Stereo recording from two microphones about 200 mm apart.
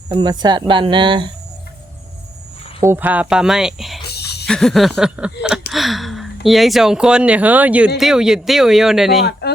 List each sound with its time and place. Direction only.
0.1 s speech: 20° right (ahead or behind)
2.8 s speech: 10° right (ahead or behind)
4.0 s a sound: 55° left (ahead or behind)
4.4 s speech: centre (ahead or behind)
9.4 s speech: 55° left (ahead or behind)